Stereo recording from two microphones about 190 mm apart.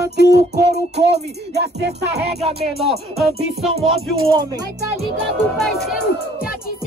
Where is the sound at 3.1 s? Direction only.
Centre (ahead or behind).